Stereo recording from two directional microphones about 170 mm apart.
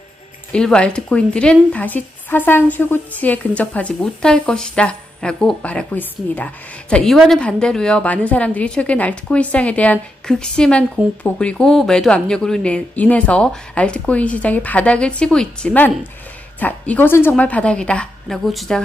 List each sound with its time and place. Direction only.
0.5 s speech: 5° left (ahead or behind)